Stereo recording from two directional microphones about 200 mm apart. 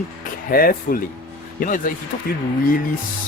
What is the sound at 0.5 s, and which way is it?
Speech, 45° left (ahead or behind).